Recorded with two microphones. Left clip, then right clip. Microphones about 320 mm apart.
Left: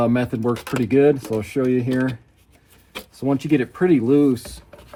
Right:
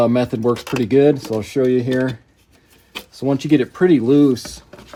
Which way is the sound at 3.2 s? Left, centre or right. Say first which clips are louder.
Right 3 dB; right.